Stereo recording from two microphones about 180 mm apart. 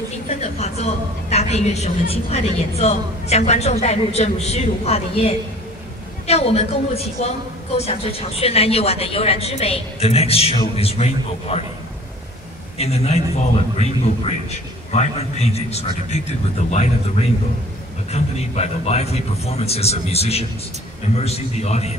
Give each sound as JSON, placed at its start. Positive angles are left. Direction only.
{"t": 0.3, "sound": "a woman's voice", "side_deg": 35}
{"t": 12.7, "sound": "a woman's voice", "side_deg": 35}